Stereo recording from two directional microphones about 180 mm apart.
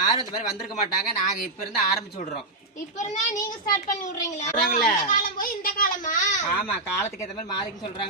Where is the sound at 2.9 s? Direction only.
40° left (ahead or behind).